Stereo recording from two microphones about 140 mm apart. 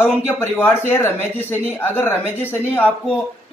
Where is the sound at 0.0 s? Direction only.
15° left (ahead or behind).